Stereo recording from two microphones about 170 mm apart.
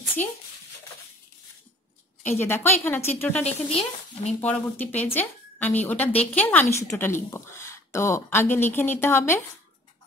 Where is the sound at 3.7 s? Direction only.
40° left (ahead or behind).